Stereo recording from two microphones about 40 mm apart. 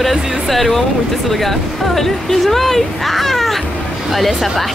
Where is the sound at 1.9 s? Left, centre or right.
Centre.